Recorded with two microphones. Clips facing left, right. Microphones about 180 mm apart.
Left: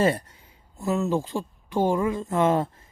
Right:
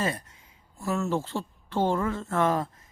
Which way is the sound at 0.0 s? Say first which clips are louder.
Left 8 dB; 30° left (ahead or behind).